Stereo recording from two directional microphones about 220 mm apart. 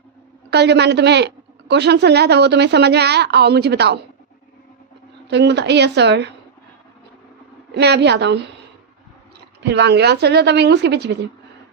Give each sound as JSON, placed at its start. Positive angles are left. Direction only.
{"t": 0.5, "sound": "a woman's voice", "side_deg": -50}
{"t": 5.3, "sound": "a woman's voice", "side_deg": -50}
{"t": 7.7, "sound": "a woman's voice", "side_deg": -50}
{"t": 9.6, "sound": "a woman's voice", "side_deg": -50}